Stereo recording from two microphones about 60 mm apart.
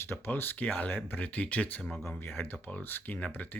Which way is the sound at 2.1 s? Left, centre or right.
Left.